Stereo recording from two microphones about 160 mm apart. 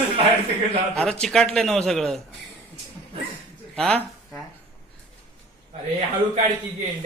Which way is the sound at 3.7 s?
5° left (ahead or behind).